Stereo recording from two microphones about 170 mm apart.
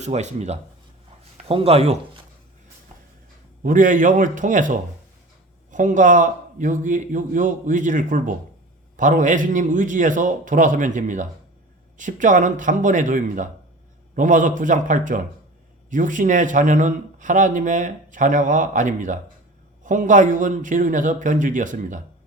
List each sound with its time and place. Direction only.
0.0 s speech: 40° right (ahead or behind)
3.6 s speech: 50° right (ahead or behind)